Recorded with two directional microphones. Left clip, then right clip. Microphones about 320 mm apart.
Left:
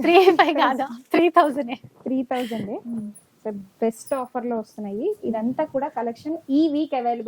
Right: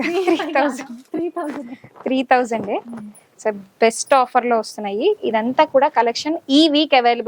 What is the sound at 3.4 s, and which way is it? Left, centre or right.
A woman's voice, centre.